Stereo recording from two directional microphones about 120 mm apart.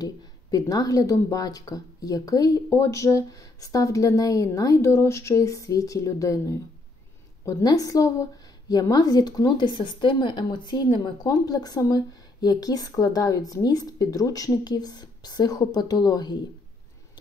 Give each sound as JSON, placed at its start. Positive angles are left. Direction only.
{"t": 0.0, "sound": "a woman's voice", "side_deg": 30}